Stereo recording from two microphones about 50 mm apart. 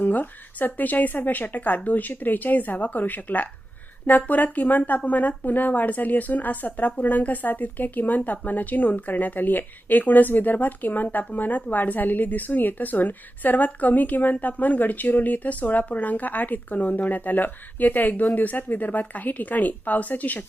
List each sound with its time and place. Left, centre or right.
0.0 s speech: left